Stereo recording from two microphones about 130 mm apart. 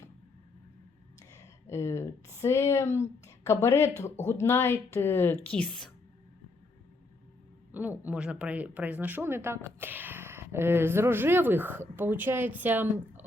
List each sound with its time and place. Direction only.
1.3 s a woman's voice: 20° left (ahead or behind)
7.7 s speech: 15° right (ahead or behind)